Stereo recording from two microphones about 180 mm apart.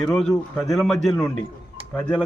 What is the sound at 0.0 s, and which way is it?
A man's voice, centre (ahead or behind).